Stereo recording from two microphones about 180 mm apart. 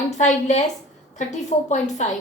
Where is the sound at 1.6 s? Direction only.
40° left (ahead or behind).